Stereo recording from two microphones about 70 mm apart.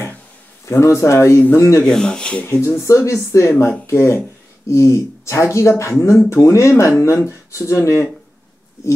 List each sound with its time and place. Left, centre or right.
0.7 s speech: left
1.9 s speech: centre
2.4 s speech: left